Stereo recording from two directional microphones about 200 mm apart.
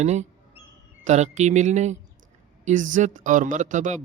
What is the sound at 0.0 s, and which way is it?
Speech, 35° right (ahead or behind).